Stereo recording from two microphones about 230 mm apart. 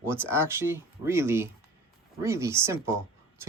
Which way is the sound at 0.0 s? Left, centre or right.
Centre.